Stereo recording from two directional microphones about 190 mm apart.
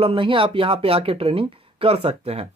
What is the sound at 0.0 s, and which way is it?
Speech, 30° right (ahead or behind).